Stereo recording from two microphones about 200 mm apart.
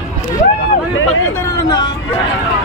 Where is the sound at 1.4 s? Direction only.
20° left (ahead or behind).